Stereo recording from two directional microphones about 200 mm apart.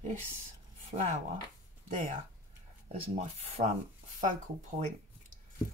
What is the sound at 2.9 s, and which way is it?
Speech, 35° right (ahead or behind).